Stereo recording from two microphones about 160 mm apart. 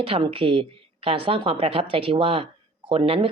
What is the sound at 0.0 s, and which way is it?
A woman's voice, 35° right (ahead or behind).